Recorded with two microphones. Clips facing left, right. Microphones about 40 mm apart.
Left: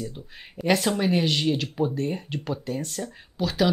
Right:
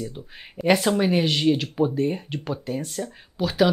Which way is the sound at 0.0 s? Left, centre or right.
Centre.